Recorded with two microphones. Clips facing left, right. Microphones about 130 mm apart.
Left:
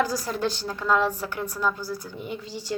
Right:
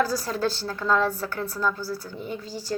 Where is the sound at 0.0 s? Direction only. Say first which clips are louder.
Right 1 dB; 15° left (ahead or behind).